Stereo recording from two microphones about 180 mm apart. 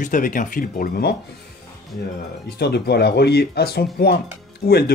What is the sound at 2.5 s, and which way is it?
Speech, 65° left (ahead or behind).